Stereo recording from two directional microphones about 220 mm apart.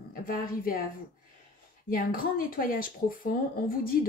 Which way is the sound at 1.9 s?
40° left (ahead or behind).